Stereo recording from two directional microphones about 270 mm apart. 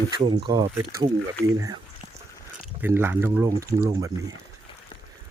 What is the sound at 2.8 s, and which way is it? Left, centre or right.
Speech, centre.